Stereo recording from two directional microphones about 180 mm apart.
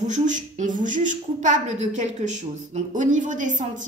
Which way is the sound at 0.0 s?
45° right (ahead or behind).